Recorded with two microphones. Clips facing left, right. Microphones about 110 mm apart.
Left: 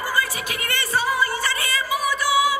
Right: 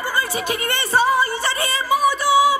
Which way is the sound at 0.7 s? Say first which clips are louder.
Right 5 dB; 30° right (ahead or behind).